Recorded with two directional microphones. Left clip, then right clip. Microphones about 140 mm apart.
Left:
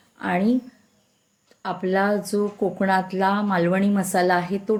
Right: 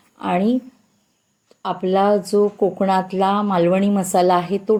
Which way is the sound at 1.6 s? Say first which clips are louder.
Right 5 dB; 15° right (ahead or behind).